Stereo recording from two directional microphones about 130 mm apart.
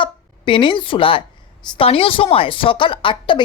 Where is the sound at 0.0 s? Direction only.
40° left (ahead or behind).